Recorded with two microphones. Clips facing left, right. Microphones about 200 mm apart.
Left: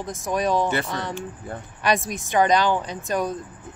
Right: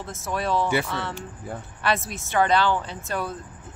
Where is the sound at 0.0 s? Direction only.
15° left (ahead or behind).